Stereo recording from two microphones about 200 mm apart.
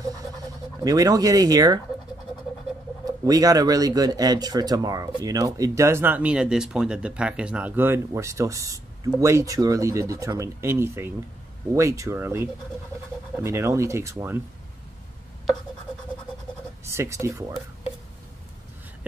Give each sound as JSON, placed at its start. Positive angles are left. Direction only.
{"t": 0.8, "sound": "speech", "side_deg": -15}
{"t": 3.1, "sound": "speech", "side_deg": -20}
{"t": 16.8, "sound": "speech", "side_deg": -15}